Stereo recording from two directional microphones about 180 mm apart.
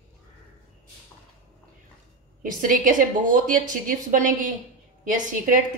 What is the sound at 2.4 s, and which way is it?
A woman's voice, 50° right (ahead or behind).